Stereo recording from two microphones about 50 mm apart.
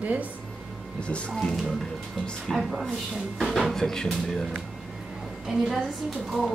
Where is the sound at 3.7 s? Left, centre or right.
Centre.